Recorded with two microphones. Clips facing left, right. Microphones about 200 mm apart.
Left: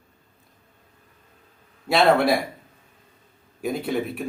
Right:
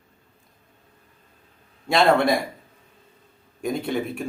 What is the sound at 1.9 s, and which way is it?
Speech, centre (ahead or behind).